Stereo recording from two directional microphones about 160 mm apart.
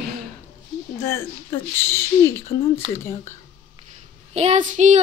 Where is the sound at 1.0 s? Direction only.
15° left (ahead or behind).